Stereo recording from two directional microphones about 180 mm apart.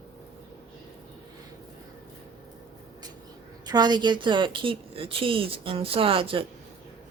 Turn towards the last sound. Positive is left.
turn(degrees=-30)  # may be behind; listen again after turning